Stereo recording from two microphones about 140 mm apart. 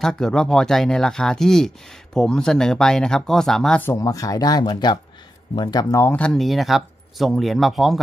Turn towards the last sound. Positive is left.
turn(degrees=0)  # may be behind; listen again after turning